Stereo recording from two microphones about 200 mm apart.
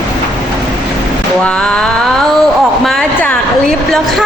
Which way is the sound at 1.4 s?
5° left (ahead or behind).